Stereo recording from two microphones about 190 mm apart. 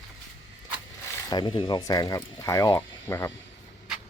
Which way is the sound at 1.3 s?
25° left (ahead or behind).